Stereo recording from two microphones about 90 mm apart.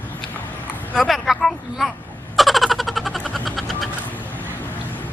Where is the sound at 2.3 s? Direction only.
Centre (ahead or behind).